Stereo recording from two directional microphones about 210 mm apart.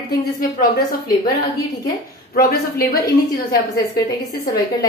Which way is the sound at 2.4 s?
45° left (ahead or behind).